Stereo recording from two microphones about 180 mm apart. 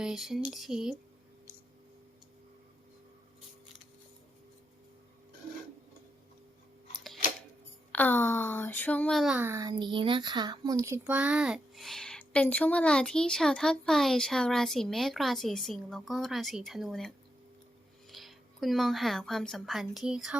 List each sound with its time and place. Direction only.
0.0 s speech: centre (ahead or behind)
6.9 s scissors: centre (ahead or behind)
7.9 s speech: 10° left (ahead or behind)
18.1 s speech: centre (ahead or behind)